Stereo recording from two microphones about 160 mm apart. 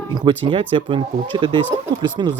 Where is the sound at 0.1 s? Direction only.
25° right (ahead or behind).